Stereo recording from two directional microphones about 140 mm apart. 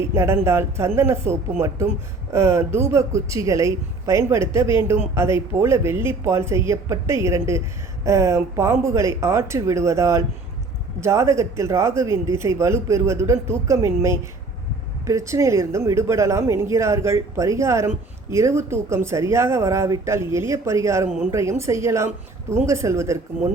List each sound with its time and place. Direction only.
0.1 s speech: 20° right (ahead or behind)